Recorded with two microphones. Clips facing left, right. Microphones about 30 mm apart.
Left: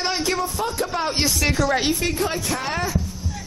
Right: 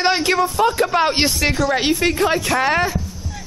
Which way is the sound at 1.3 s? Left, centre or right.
Centre.